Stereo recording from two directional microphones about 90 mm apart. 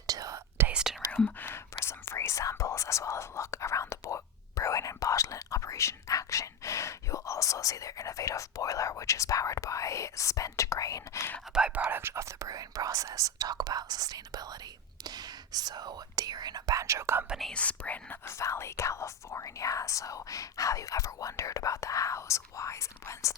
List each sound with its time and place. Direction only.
0.1 s whispering: 40° right (ahead or behind)
0.7 s whispering: 10° right (ahead or behind)
1.1 s speech: 15° left (ahead or behind)
1.8 s whispering: 30° left (ahead or behind)
11.5 s whispering: 10° right (ahead or behind); by 17.2 s 30° right (ahead or behind)
17.2 s whispering: centre (ahead or behind)
17.5 s whispering: 15° left (ahead or behind)
18.3 s whispering: 30° left (ahead or behind)